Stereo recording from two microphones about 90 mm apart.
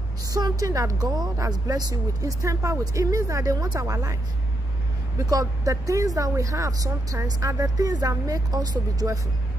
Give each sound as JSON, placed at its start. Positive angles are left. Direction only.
{"t": 0.3, "sound": "speech", "side_deg": -40}
{"t": 5.2, "sound": "speech", "side_deg": -45}